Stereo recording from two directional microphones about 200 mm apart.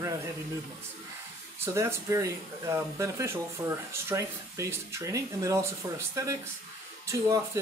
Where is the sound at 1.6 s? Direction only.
15° right (ahead or behind).